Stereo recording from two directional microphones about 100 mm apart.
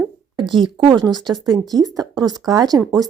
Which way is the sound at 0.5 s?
55° right (ahead or behind).